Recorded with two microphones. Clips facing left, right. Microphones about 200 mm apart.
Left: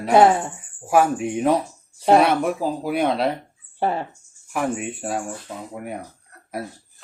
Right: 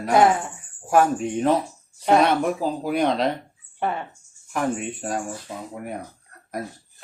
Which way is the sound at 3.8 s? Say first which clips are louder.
Left 3 dB; 35° left (ahead or behind).